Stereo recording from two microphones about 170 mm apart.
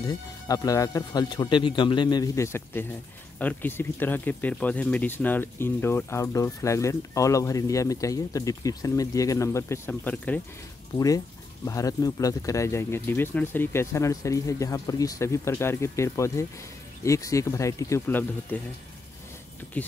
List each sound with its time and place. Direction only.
0.0 s speech: 20° left (ahead or behind)
11.6 s speech: 20° left (ahead or behind)